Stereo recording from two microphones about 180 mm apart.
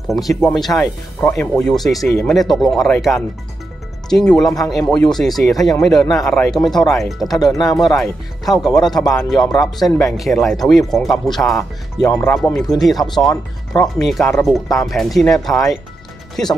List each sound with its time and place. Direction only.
0.1 s speech: centre (ahead or behind)
12.1 s speech: 10° left (ahead or behind)